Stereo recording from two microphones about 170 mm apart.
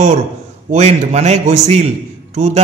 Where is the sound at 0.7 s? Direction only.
40° right (ahead or behind).